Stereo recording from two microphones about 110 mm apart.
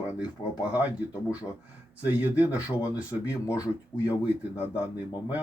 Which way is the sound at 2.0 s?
15° right (ahead or behind).